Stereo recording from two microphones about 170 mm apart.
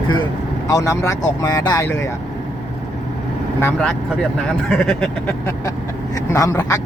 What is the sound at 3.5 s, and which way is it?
Vehicle, 15° left (ahead or behind).